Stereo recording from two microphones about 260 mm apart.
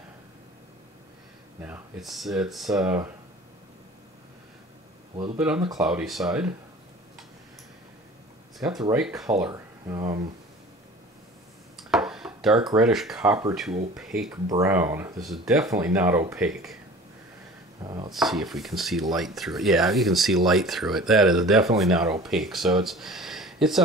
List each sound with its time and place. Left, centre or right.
1.6 s speech: centre
5.1 s speech: centre
5.8 s speech: centre
8.6 s speech: centre
11.9 s speech: centre
17.8 s speech: centre
18.1 s speech: centre